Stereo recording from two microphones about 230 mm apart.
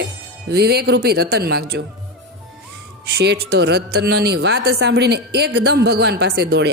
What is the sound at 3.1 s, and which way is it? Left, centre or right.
Speech, right.